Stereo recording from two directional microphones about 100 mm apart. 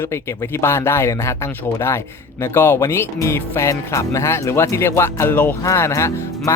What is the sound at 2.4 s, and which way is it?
Speech, 25° left (ahead or behind).